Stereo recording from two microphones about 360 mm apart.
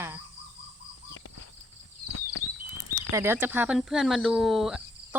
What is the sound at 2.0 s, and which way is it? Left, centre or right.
Patter, left.